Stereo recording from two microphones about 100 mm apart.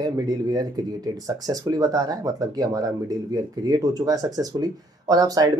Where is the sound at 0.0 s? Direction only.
40° right (ahead or behind).